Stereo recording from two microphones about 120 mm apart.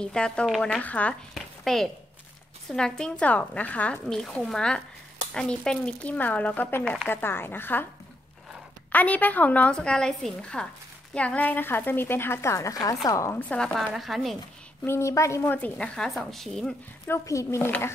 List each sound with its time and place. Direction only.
0.0 s speech: 10° left (ahead or behind)
8.9 s speech: 10° left (ahead or behind); by 13.3 s 30° left (ahead or behind)
13.3 s speech: 15° left (ahead or behind)
13.7 s speech: centre (ahead or behind)
14.9 s speech: 25° left (ahead or behind); by 16.7 s centre (ahead or behind)
17.1 s speech: 25° left (ahead or behind)